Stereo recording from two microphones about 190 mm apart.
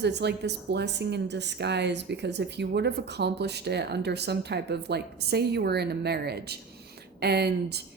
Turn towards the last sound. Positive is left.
turn(degrees=-60)  # may be behind; listen again after turning